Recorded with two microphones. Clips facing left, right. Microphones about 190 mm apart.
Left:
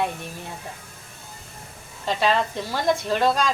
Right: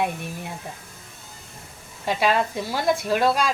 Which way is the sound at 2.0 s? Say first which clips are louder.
Even; 10° right (ahead or behind).